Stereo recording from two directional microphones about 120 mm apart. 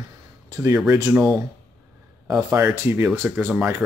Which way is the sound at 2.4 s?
15° right (ahead or behind).